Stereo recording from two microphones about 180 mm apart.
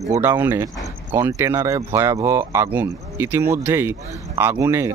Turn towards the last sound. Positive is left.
turn(degrees=-15)  # may be behind; listen again after turning